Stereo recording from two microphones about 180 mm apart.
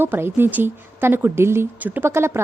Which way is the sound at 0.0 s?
10° right (ahead or behind).